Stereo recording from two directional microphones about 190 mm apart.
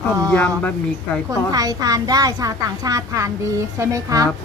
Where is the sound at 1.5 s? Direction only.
20° right (ahead or behind).